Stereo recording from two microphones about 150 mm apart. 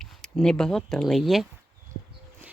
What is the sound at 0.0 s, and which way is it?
A woman's voice, 5° left (ahead or behind).